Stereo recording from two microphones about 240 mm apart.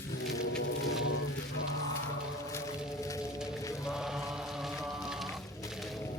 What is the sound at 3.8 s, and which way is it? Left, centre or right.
Chant, centre.